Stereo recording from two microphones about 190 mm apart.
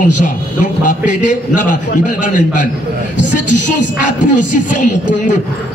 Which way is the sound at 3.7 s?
40° left (ahead or behind).